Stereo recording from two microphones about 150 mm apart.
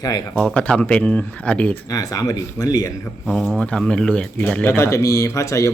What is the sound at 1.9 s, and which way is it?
Speech, 20° left (ahead or behind).